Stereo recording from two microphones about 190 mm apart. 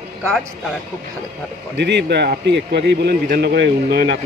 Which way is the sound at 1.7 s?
65° right (ahead or behind).